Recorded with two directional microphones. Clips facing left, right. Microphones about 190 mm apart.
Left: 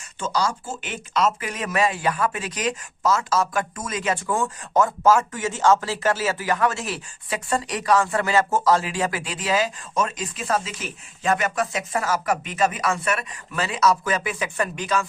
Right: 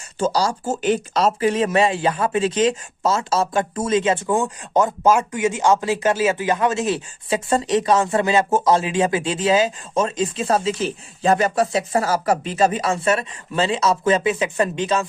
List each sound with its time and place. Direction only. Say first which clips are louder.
0.2 s speech: right 5 dB; 35° right (ahead or behind)